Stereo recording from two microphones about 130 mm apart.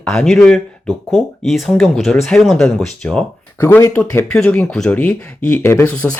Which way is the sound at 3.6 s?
20° left (ahead or behind).